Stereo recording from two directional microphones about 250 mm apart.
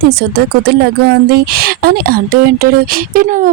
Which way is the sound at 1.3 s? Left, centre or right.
Right.